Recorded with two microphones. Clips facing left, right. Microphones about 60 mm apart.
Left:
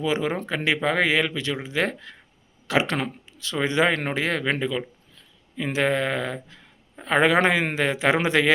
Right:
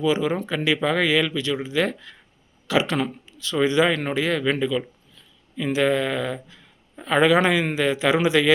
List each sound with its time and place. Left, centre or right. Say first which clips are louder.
0.0 s speech: right 3 dB; left